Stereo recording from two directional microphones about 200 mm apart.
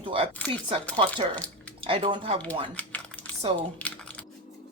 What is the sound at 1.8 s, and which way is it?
Speech, 30° right (ahead or behind).